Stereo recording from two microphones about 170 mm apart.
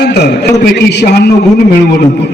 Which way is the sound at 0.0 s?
75° left (ahead or behind).